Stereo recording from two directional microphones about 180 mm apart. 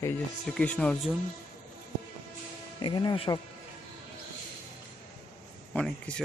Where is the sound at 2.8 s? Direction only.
25° left (ahead or behind).